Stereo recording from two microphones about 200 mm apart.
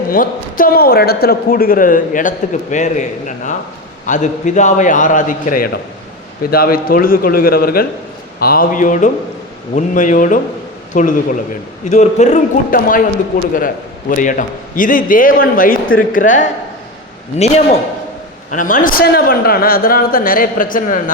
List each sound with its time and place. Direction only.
0.1 s a man's voice: 45° left (ahead or behind)
14.1 s a man's voice: 40° left (ahead or behind)